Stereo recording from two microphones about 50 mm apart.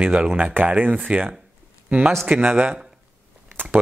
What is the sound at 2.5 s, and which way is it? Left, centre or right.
Speech, right.